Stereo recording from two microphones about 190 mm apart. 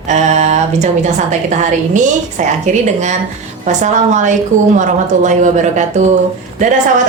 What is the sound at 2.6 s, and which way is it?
A woman's voice, 40° right (ahead or behind).